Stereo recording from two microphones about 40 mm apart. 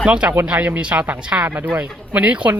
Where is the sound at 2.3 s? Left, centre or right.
Right.